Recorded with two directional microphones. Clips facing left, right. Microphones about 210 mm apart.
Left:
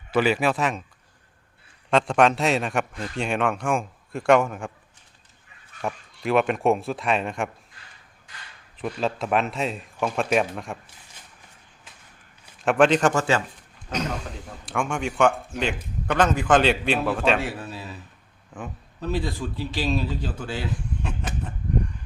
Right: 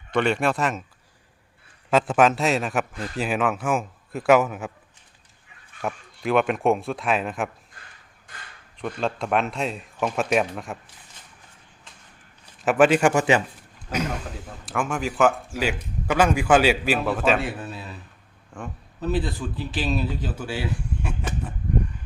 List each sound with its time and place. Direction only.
0.1 s a man's voice: 5° left (ahead or behind)
1.9 s a man's voice: 5° right (ahead or behind)
5.8 s a man's voice: centre (ahead or behind)
7.8 s a sound: 50° right (ahead or behind)
8.3 s speech: 55° right (ahead or behind)
8.8 s a man's voice: centre (ahead or behind)
12.6 s a man's voice: 5° right (ahead or behind)